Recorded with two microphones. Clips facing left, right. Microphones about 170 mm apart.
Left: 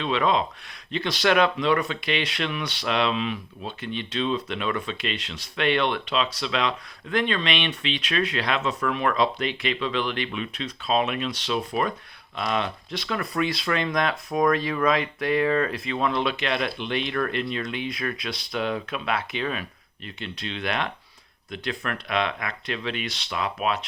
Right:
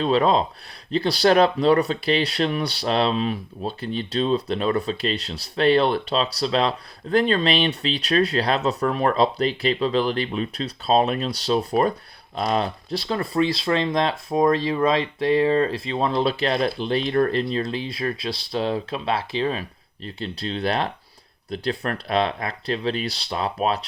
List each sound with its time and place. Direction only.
0.0 s speech: 35° right (ahead or behind)